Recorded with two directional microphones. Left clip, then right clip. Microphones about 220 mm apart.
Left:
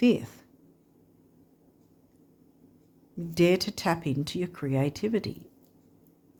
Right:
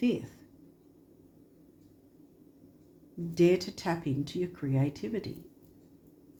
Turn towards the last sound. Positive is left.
turn(degrees=45)  # may be behind; listen again after turning